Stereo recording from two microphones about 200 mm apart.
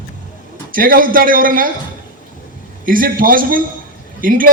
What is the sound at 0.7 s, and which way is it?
Speech, 45° right (ahead or behind).